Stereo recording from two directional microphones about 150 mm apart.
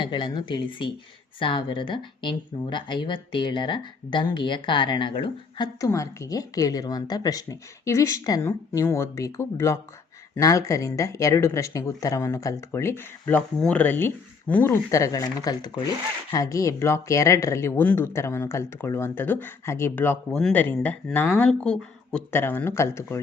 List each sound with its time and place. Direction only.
0.0 s speech: 30° left (ahead or behind)